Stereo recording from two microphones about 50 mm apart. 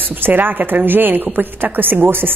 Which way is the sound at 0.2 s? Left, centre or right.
Right.